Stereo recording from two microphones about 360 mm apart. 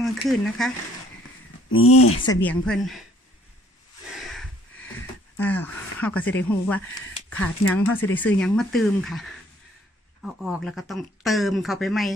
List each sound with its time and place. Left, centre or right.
0.0 s speech: centre
1.7 s speech: left
2.2 s speech: centre
5.4 s speech: centre